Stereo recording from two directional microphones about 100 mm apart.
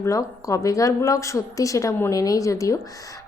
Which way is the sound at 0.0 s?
30° left (ahead or behind).